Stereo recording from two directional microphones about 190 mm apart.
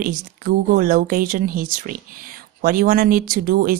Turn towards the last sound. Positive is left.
turn(degrees=-50)  # may be behind; listen again after turning